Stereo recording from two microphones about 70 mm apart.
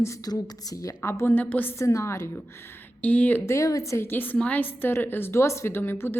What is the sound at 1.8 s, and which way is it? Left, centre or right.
Speech, left.